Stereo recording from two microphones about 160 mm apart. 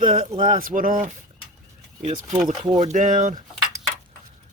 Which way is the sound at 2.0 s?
45° right (ahead or behind).